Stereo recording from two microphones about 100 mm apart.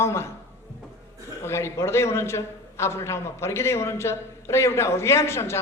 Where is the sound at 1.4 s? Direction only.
25° left (ahead or behind).